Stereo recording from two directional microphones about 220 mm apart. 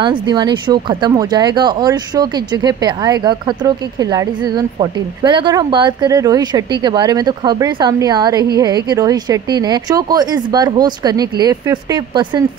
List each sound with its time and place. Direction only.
0.0 s speech: 20° right (ahead or behind)